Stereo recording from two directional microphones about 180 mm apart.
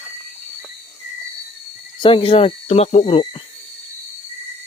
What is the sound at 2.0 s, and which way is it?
Speech, 30° left (ahead or behind).